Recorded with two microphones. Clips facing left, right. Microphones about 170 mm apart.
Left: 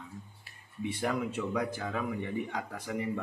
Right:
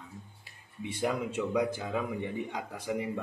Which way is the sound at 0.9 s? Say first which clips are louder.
Right 2 dB; 15° right (ahead or behind).